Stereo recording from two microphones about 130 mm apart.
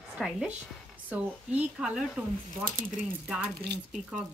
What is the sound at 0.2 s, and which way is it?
Speech, 5° right (ahead or behind).